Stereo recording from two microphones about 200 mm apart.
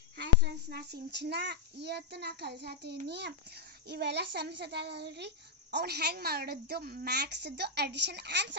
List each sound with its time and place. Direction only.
0.2 s a child's voice: 55° right (ahead or behind)